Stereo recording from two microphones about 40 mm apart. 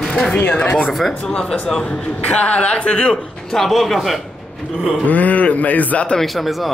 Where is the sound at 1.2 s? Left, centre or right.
Centre.